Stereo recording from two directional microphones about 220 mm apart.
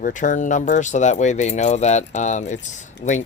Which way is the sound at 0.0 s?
35° left (ahead or behind).